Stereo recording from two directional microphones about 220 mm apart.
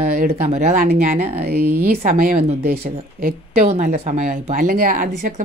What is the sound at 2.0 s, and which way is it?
Speech, 40° right (ahead or behind).